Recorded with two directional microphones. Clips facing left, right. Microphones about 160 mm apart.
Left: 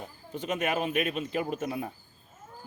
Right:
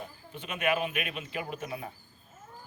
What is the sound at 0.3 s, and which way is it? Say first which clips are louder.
A man's voice: left 1 dB; 40° left (ahead or behind).